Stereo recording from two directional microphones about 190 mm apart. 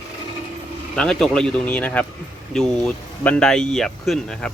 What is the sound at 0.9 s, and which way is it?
Speech, centre (ahead or behind).